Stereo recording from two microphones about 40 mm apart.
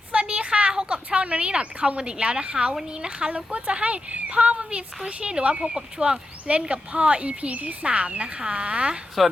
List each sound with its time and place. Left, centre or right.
0.1 s a sound: right
2.9 s speech: right
9.2 s speech: centre